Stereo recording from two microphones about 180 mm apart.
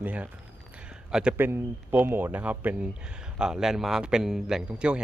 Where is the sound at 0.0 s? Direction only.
10° right (ahead or behind).